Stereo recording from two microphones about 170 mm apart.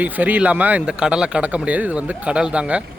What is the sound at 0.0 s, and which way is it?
Speech, 10° right (ahead or behind).